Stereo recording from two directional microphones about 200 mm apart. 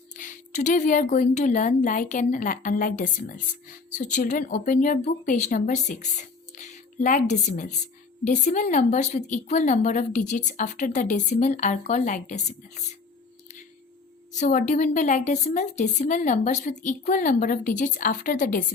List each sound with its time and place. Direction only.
0.2 s a woman's voice: 40° left (ahead or behind)
14.3 s a woman's voice: 35° left (ahead or behind)